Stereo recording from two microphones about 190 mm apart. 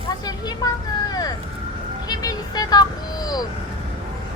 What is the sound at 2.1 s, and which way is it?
Speech, 20° left (ahead or behind).